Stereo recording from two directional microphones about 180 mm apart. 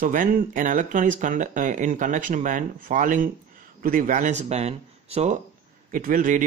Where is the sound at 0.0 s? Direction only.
50° right (ahead or behind).